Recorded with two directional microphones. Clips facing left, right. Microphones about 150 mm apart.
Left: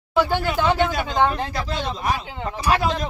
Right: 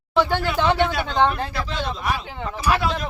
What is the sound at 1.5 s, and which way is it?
Speech, 40° left (ahead or behind).